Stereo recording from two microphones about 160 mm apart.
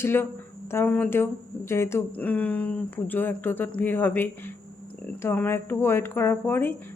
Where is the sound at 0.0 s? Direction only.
15° left (ahead or behind).